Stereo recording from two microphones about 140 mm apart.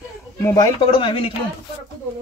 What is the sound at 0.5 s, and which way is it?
Speech, 30° left (ahead or behind).